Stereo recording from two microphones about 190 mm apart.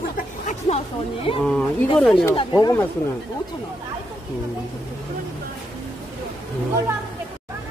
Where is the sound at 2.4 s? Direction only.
20° left (ahead or behind).